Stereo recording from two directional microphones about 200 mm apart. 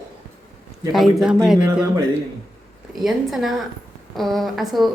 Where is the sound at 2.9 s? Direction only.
Centre (ahead or behind).